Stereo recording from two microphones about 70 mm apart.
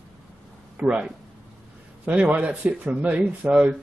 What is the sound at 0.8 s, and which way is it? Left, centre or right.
Speech, centre.